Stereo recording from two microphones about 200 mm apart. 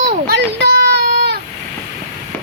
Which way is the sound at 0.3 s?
60° right (ahead or behind).